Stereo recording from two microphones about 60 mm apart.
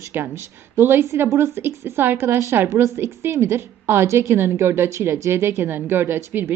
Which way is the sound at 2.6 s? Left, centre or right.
Right.